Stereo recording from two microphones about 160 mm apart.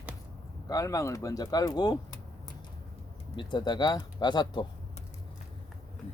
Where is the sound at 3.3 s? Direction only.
30° left (ahead or behind).